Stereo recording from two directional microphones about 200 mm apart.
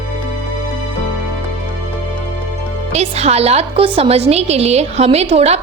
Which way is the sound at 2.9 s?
30° right (ahead or behind).